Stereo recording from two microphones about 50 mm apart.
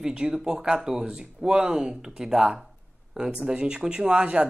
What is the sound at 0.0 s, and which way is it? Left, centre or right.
Speech, centre.